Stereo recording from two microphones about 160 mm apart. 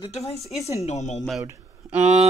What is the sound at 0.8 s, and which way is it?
Speech, 45° left (ahead or behind).